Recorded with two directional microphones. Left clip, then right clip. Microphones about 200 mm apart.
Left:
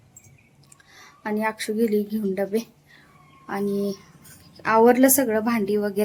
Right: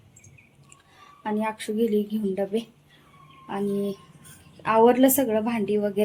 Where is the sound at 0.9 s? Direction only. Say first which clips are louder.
Left 1 dB; 10° left (ahead or behind).